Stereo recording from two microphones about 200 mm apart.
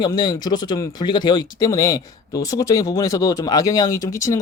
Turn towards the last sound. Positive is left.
turn(degrees=15)  # may be behind; listen again after turning